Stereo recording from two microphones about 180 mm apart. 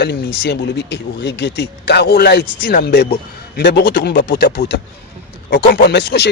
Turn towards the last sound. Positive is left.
turn(degrees=70)  # may be behind; listen again after turning